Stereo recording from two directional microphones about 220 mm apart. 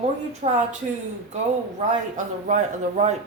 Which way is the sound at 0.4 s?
35° right (ahead or behind).